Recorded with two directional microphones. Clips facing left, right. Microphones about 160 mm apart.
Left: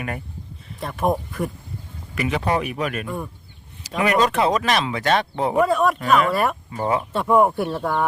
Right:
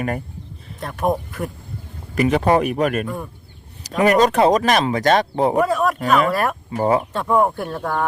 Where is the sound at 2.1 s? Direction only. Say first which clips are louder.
Right 6 dB; 40° right (ahead or behind).